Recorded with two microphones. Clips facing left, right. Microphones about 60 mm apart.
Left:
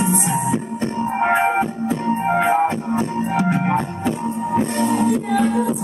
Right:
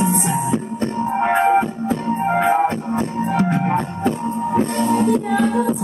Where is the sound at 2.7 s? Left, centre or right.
Right.